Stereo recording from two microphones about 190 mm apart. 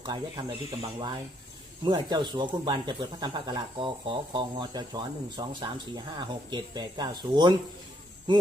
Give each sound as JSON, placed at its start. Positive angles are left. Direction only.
{"t": 0.0, "sound": "speech", "side_deg": -25}